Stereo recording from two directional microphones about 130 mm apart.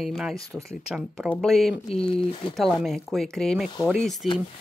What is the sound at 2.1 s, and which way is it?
Speech, 45° left (ahead or behind).